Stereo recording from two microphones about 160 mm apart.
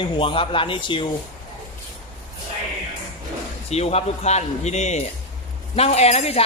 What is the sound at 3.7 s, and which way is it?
A man's voice, 40° left (ahead or behind).